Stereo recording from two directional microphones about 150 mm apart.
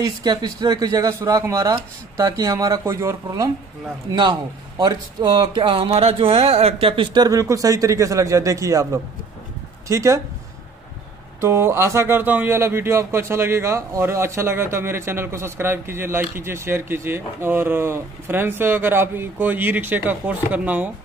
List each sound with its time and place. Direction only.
0.0 s speech: 25° right (ahead or behind)
11.4 s speech: 15° right (ahead or behind)